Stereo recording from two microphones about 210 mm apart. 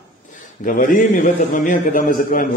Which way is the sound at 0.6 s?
40° left (ahead or behind).